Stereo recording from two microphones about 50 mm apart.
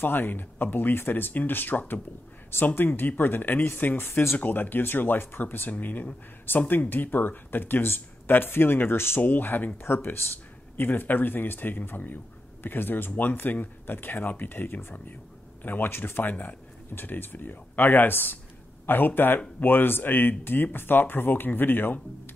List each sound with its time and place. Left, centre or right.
0.0 s speech: left
4.4 s speech: left
9.2 s speech: left